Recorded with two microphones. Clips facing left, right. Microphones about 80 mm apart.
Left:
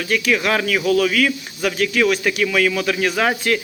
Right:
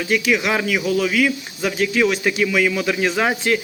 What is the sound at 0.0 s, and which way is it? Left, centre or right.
A man's voice, centre.